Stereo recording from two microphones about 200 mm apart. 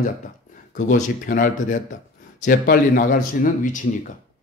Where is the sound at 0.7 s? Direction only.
40° left (ahead or behind).